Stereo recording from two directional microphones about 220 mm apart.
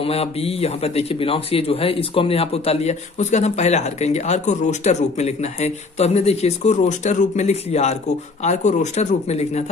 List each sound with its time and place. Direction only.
0.0 s speech: 25° left (ahead or behind)